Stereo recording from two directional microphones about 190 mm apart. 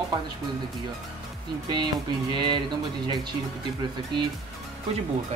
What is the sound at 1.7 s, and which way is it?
Music, 25° right (ahead or behind).